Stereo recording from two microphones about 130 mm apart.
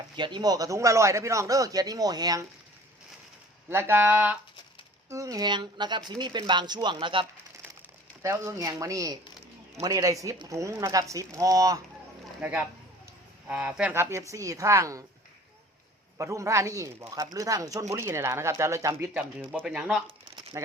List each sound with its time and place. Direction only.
0.2 s a man's voice: 35° right (ahead or behind)
3.7 s speech: 20° right (ahead or behind)
5.0 s speech: 25° right (ahead or behind); by 7.3 s 40° right (ahead or behind)
8.2 s a man's voice: 25° right (ahead or behind)
12.4 s a man's voice: 10° right (ahead or behind)
16.1 s a man's voice: 25° right (ahead or behind)
19.6 s speech: 5° right (ahead or behind)